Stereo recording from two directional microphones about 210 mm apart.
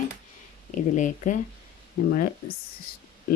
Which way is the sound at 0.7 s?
35° left (ahead or behind).